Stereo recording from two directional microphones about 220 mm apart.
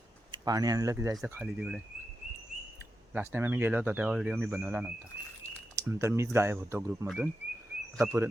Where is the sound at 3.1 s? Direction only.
10° right (ahead or behind).